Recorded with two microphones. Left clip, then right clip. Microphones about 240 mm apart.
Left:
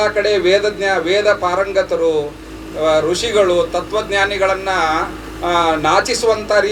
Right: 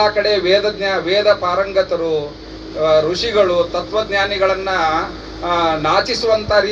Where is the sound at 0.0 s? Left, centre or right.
Left.